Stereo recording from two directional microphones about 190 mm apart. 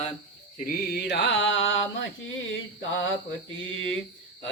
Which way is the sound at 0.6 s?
60° left (ahead or behind).